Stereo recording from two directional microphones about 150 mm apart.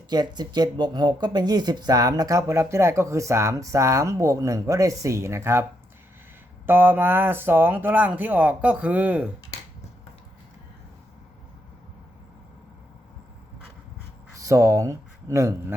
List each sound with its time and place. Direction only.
0.1 s speech: 30° right (ahead or behind)
6.7 s speech: 15° right (ahead or behind)
14.3 s speech: 20° right (ahead or behind)